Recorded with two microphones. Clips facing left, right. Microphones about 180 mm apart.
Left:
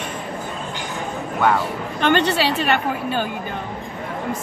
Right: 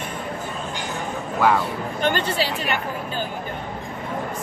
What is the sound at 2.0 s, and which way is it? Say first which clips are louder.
Speech: left 5 dB; 80° left.